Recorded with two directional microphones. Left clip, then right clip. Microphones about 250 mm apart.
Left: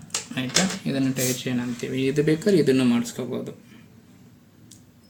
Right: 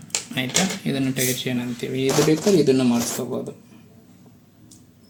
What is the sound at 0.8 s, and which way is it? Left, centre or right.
Speech, centre.